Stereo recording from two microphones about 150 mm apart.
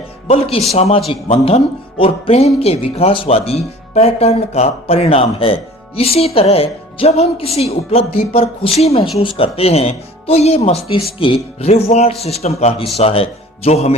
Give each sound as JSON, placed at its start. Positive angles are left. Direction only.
{"t": 0.3, "sound": "speech", "side_deg": 40}